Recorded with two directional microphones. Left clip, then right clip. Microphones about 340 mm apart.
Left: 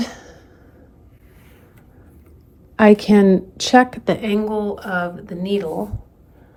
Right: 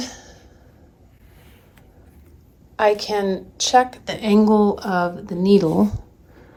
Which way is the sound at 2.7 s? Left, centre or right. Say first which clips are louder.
Left 5 dB; centre.